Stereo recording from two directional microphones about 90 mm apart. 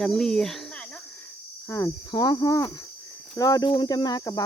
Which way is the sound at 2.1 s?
50° left (ahead or behind).